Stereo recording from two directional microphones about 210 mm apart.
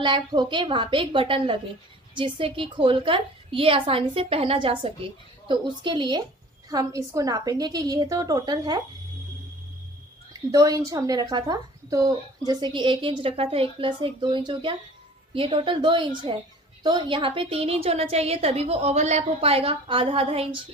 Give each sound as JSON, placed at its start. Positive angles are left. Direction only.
{"t": 0.0, "sound": "a woman's voice", "side_deg": -20}
{"t": 10.5, "sound": "a woman's voice", "side_deg": -15}